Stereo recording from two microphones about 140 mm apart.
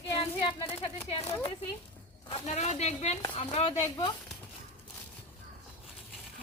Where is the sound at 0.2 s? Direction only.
40° left (ahead or behind).